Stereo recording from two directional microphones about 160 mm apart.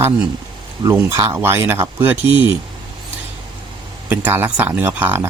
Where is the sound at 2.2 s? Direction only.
35° left (ahead or behind).